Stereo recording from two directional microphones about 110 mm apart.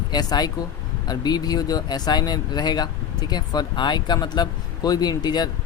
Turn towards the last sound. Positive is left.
turn(degrees=40)  # may be behind; listen again after turning